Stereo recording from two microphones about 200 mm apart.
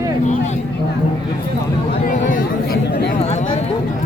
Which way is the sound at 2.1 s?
40° left (ahead or behind).